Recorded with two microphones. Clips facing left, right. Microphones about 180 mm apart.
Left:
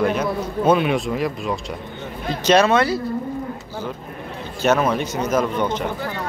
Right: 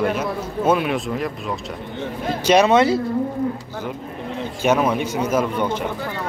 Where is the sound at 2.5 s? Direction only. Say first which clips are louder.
Right 1 dB; 15° right (ahead or behind).